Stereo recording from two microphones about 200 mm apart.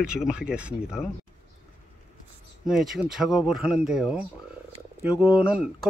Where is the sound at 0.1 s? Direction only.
5° right (ahead or behind).